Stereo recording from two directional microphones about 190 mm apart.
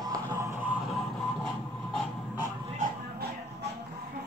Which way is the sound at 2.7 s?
55° right (ahead or behind).